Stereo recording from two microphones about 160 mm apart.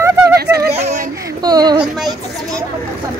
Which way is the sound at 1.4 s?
25° right (ahead or behind).